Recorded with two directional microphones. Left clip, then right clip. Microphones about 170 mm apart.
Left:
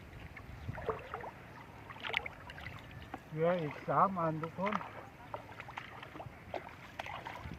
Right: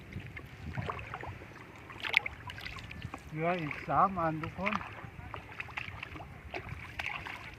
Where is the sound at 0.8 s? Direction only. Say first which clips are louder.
Even; 45° left (ahead or behind).